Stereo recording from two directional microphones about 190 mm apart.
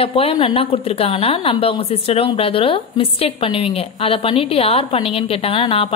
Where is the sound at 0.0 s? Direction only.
30° left (ahead or behind).